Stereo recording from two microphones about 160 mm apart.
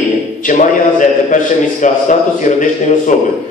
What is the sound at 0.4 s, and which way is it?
A man's voice, 55° left (ahead or behind).